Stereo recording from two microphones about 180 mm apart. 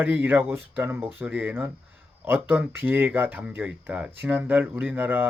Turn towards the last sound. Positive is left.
turn(degrees=-10)  # may be behind; listen again after turning